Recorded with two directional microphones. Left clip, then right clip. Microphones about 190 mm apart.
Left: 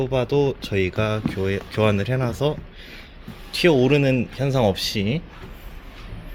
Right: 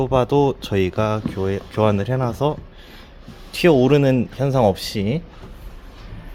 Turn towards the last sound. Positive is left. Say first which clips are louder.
# right 1 dB
turn(degrees=-10)  # may be behind; listen again after turning